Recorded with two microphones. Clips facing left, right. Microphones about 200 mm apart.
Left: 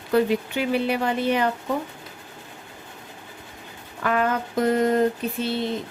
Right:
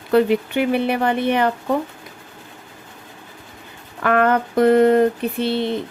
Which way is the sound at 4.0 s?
60° right (ahead or behind).